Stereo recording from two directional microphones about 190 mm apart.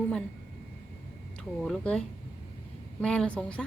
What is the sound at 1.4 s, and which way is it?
A woman's voice, 5° left (ahead or behind).